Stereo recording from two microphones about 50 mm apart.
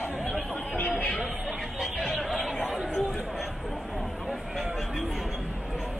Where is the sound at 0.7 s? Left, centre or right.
Left.